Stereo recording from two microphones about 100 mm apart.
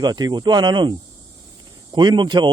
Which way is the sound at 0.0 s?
45° right (ahead or behind).